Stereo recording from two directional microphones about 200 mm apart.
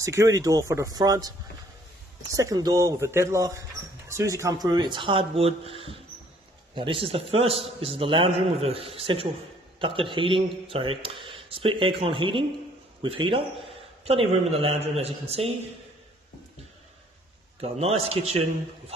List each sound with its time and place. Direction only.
0.0 s speech: 15° right (ahead or behind)
2.3 s a man's voice: 20° right (ahead or behind)
17.6 s a man's voice: 30° right (ahead or behind)